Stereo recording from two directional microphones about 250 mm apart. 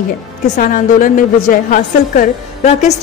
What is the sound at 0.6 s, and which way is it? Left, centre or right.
A woman's voice, left.